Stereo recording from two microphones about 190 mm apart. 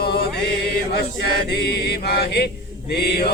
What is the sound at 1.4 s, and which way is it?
Chant, 60° left (ahead or behind).